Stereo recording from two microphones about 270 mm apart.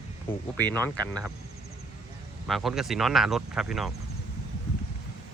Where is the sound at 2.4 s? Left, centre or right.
Centre.